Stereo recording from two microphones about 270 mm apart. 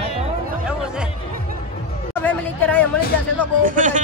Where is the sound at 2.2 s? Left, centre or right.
Centre.